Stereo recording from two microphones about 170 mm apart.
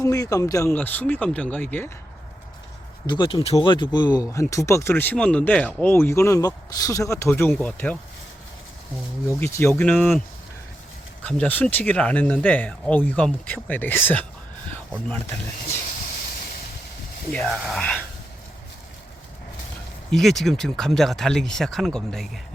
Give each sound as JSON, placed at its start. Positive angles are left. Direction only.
{"t": 0.0, "sound": "speech", "side_deg": 20}
{"t": 3.1, "sound": "speech", "side_deg": 25}
{"t": 9.2, "sound": "speech", "side_deg": 15}
{"t": 11.3, "sound": "speech", "side_deg": 10}
{"t": 17.3, "sound": "speech", "side_deg": 5}
{"t": 20.1, "sound": "speech", "side_deg": 0}